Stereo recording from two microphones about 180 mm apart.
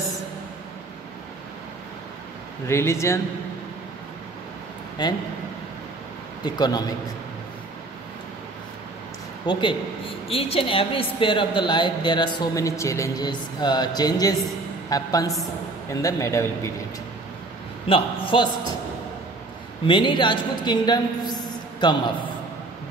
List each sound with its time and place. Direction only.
2.6 s a man's voice: 15° left (ahead or behind)
5.0 s a woman's voice: 25° left (ahead or behind)
6.4 s a woman's voice: 20° left (ahead or behind)
9.5 s a woman's voice: 25° left (ahead or behind)
17.8 s a woman's voice: 30° left (ahead or behind)
19.9 s a woman's voice: 25° left (ahead or behind)